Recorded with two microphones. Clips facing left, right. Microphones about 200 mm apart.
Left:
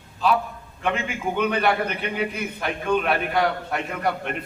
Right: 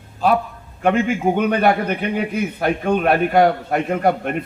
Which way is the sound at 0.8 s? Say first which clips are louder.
Right 9 dB; 45° right (ahead or behind).